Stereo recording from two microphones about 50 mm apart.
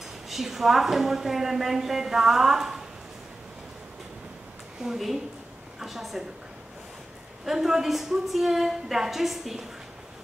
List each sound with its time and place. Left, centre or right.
0.3 s a woman's voice: centre
4.8 s a woman's voice: centre
7.4 s a woman's voice: centre